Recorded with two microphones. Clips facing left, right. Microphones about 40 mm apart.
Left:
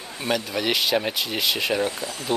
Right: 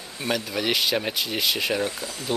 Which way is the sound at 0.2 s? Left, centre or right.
Centre.